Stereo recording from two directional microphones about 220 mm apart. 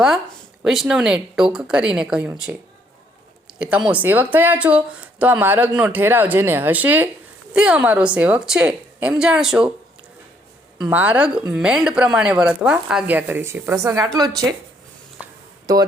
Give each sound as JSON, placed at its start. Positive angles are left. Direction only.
{"t": 0.6, "sound": "speech", "side_deg": 0}
{"t": 10.8, "sound": "speech", "side_deg": -10}
{"t": 15.2, "sound": "a sound", "side_deg": -15}